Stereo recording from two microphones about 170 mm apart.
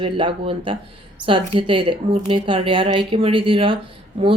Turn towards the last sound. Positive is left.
turn(degrees=-35)  # may be behind; listen again after turning